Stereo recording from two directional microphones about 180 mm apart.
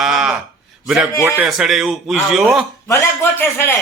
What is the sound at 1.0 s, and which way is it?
Speech, 15° right (ahead or behind).